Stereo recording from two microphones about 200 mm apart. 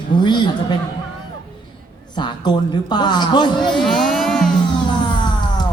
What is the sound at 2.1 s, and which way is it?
A man's voice, 20° left (ahead or behind).